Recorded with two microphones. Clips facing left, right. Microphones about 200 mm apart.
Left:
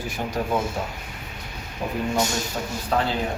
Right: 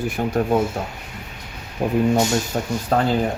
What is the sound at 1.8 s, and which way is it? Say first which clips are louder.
Speech: right 7 dB; 50° right (ahead or behind).